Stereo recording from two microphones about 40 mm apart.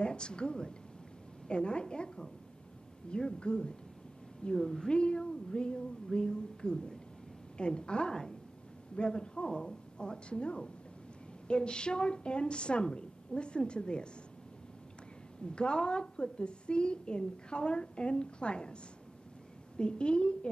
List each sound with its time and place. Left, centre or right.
0.0 s a woman's voice: left
4.6 s a woman's voice: centre
15.4 s a woman's voice: left
19.8 s a woman's voice: left